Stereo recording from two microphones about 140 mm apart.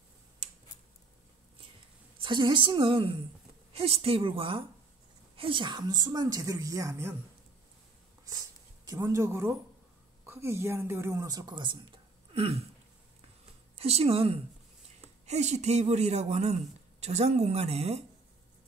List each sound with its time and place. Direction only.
2.2 s a woman's voice: 35° right (ahead or behind)
8.3 s a sound: 25° right (ahead or behind)
10.2 s speech: 20° right (ahead or behind); by 12.6 s 45° right (ahead or behind)
13.7 s speech: 45° right (ahead or behind)